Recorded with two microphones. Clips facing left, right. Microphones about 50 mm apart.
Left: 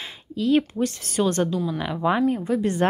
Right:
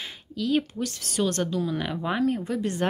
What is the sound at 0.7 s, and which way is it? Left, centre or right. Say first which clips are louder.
Speech: left 4 dB; left.